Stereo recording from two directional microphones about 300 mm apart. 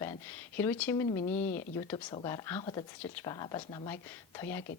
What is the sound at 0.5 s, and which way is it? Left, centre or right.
Speech, centre.